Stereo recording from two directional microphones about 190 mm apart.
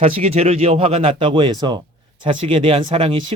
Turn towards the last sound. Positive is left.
turn(degrees=-30)  # may be behind; listen again after turning